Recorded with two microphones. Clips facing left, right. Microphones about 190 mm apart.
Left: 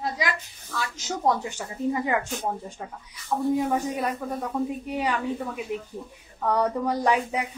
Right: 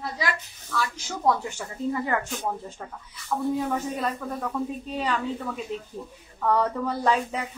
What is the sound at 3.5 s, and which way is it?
Speech, 15° left (ahead or behind).